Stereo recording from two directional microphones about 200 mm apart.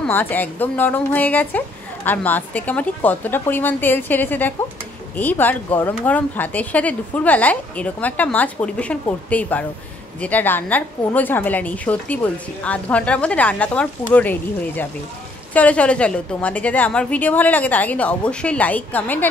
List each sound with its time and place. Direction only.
0.0 s a woman's voice: 10° left (ahead or behind)